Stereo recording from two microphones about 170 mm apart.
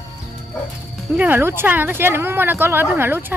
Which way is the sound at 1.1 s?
10° right (ahead or behind).